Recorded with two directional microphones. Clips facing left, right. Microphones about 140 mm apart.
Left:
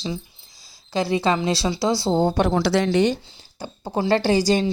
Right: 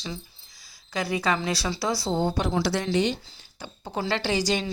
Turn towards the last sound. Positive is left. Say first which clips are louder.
# left 7 dB
turn(degrees=35)  # may be behind; listen again after turning